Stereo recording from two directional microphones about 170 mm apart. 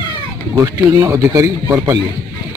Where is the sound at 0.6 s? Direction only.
15° right (ahead or behind).